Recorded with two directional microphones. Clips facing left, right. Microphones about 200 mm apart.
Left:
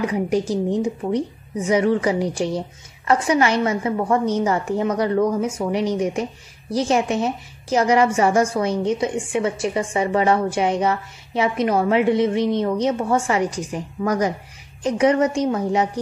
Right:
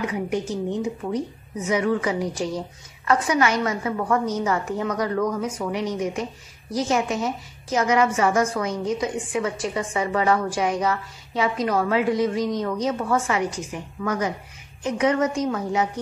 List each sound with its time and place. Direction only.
0.0 s a woman's voice: 35° left (ahead or behind)